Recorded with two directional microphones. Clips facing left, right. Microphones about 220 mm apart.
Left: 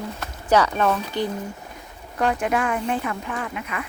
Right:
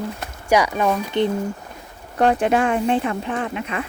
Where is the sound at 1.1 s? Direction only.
25° right (ahead or behind).